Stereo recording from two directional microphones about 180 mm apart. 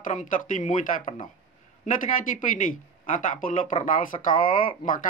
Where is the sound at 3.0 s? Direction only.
45° left (ahead or behind).